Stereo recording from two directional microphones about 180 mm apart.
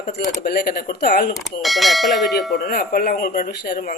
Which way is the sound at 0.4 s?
60° left (ahead or behind).